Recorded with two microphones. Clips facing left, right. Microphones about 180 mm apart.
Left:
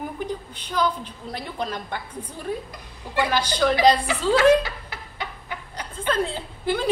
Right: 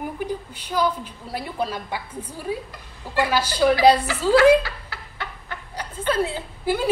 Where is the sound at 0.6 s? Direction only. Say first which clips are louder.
Right 1 dB; 10° right (ahead or behind).